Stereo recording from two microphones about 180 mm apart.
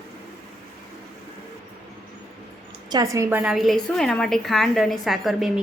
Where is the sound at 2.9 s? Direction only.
15° right (ahead or behind); by 5.5 s centre (ahead or behind).